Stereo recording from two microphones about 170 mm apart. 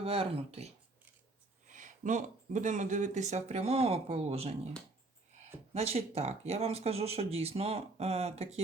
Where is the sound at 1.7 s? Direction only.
45° right (ahead or behind).